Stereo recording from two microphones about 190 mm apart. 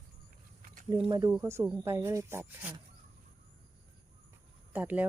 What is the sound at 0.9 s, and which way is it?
Speech, 25° right (ahead or behind).